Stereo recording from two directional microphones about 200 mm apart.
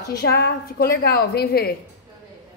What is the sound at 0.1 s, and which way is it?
A woman's voice, 50° left (ahead or behind).